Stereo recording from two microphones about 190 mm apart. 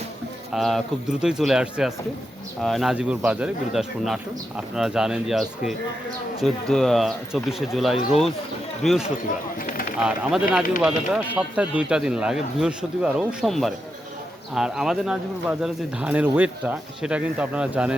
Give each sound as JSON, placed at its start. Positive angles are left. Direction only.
{"t": 0.5, "sound": "speech", "side_deg": 0}
{"t": 9.6, "sound": "a sound", "side_deg": 45}
{"t": 10.5, "sound": "speech", "side_deg": -5}